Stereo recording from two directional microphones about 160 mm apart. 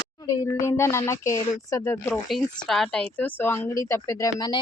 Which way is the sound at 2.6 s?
Centre (ahead or behind).